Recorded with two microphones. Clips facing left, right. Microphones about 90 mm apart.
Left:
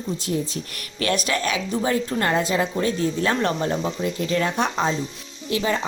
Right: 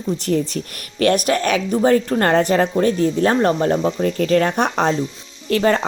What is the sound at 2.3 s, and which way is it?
Speech, 60° right (ahead or behind).